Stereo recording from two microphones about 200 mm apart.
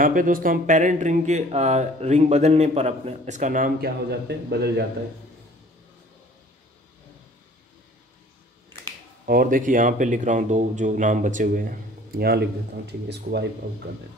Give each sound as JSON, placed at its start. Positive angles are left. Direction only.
{"t": 0.0, "sound": "speech", "side_deg": -45}
{"t": 9.2, "sound": "speech", "side_deg": -45}